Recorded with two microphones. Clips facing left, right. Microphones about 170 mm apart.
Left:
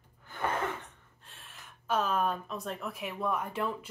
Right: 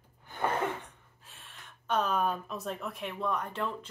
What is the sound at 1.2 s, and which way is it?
Speech, centre (ahead or behind).